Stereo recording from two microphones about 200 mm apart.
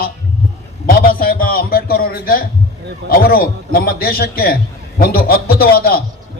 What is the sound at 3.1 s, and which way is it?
A man's voice, 45° left (ahead or behind).